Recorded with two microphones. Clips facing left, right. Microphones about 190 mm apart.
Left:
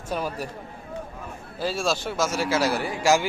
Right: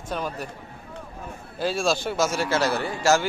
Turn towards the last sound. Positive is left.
turn(degrees=10)  # may be behind; listen again after turning